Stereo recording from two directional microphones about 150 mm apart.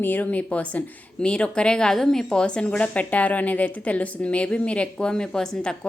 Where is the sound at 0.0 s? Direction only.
10° left (ahead or behind).